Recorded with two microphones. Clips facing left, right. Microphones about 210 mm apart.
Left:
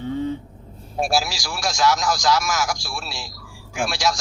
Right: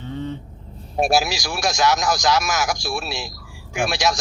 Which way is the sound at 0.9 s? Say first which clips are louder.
Right 3 dB; 20° right (ahead or behind).